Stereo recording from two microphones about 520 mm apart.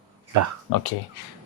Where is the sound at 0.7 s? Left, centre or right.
Left.